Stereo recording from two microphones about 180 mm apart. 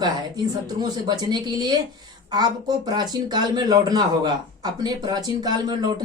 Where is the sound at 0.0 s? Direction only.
20° right (ahead or behind).